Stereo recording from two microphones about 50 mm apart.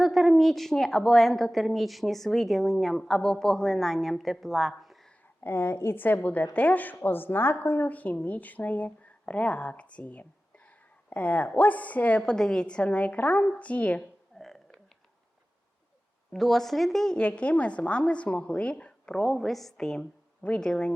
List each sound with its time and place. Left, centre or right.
0.0 s a woman's voice: centre
5.4 s a woman's voice: left
6.2 s speech: left
12.2 s a woman's voice: centre
14.3 s a sound: centre
16.3 s a woman's voice: centre
17.2 s a woman's voice: left
19.2 s a woman's voice: centre